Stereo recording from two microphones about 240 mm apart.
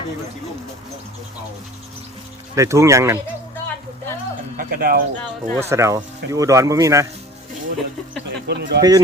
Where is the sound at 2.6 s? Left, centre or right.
Centre.